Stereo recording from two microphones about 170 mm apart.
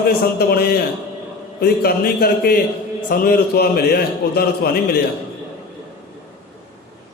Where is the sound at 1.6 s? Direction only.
65° left (ahead or behind).